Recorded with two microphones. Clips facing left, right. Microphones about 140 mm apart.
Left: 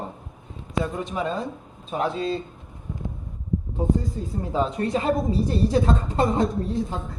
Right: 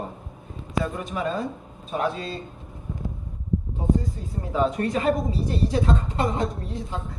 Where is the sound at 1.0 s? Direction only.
25° left (ahead or behind).